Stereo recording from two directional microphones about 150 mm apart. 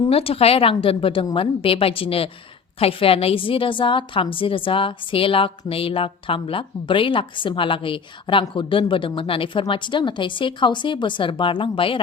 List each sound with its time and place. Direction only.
0.0 s a woman's voice: 40° left (ahead or behind)